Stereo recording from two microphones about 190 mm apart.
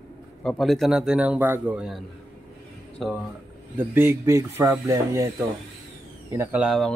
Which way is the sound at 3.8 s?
10° right (ahead or behind).